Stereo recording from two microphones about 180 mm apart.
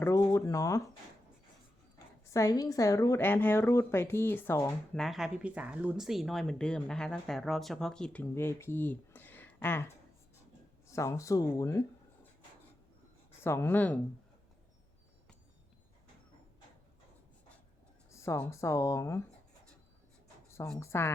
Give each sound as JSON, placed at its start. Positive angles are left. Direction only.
{"t": 0.0, "sound": "speech", "side_deg": 15}
{"t": 2.2, "sound": "a woman's voice", "side_deg": 15}
{"t": 5.0, "sound": "speech", "side_deg": 0}
{"t": 10.9, "sound": "a woman's voice", "side_deg": 15}
{"t": 13.4, "sound": "a woman's voice", "side_deg": 15}
{"t": 18.1, "sound": "a woman's voice", "side_deg": 15}
{"t": 20.7, "sound": "a woman's voice", "side_deg": 15}